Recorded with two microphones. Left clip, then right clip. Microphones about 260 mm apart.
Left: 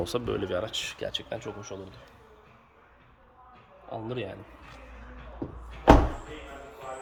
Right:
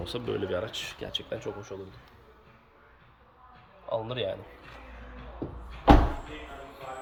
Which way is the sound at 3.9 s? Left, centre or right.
Centre.